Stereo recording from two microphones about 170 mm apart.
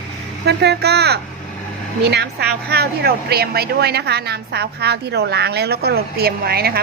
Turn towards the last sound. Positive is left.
turn(degrees=-65)  # may be behind; listen again after turning